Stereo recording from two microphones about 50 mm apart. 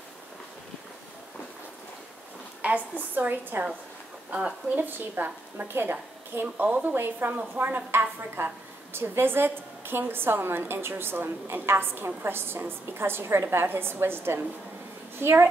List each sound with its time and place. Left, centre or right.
2.6 s a woman's voice: right
4.7 s a woman's voice: right
6.6 s a woman's voice: right
8.4 s a woman's voice: right